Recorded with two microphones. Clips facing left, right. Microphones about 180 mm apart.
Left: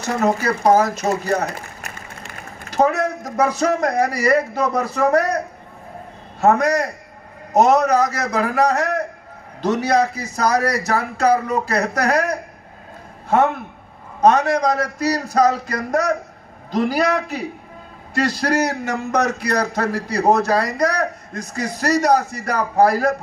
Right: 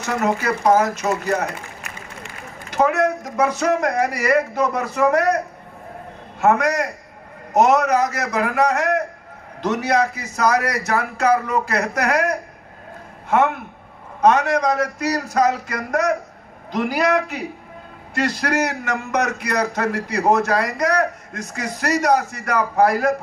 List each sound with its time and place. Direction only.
0.0 s a man's voice: 35° left (ahead or behind)
6.4 s a man's voice: 35° left (ahead or behind)
14.2 s a man's voice: 35° left (ahead or behind)